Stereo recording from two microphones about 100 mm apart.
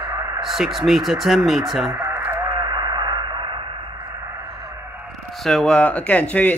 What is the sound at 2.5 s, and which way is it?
Radio, 45° right (ahead or behind).